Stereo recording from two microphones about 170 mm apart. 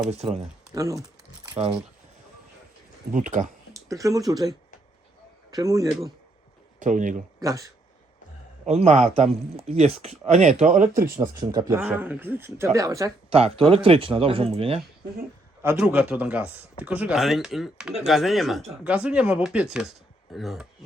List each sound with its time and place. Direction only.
0.1 s speech: 40° right (ahead or behind)
0.7 s speech: 20° right (ahead or behind)
1.5 s speech: 35° right (ahead or behind)
3.1 s speech: 50° right (ahead or behind)
3.7 s a sound: 20° right (ahead or behind)
4.3 s speech: 20° right (ahead or behind)
6.7 s speech: 50° right (ahead or behind)
7.4 s speech: 20° right (ahead or behind)
8.6 s speech: 40° right (ahead or behind)
11.7 s speech: 10° right (ahead or behind)
13.3 s speech: 35° right (ahead or behind)
15.6 s speech: 10° right (ahead or behind)